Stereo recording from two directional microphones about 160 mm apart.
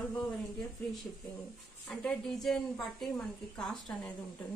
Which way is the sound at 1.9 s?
Centre (ahead or behind).